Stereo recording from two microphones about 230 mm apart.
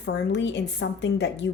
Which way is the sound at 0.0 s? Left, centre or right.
Left.